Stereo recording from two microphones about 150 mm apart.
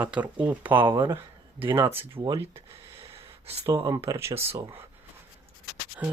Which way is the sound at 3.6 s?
30° right (ahead or behind).